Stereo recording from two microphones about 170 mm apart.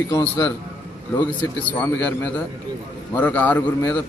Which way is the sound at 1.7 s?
10° left (ahead or behind).